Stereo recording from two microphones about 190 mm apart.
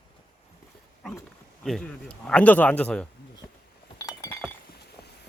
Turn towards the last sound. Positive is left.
turn(degrees=15)  # may be behind; listen again after turning